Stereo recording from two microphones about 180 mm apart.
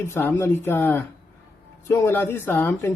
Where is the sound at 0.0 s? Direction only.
15° left (ahead or behind).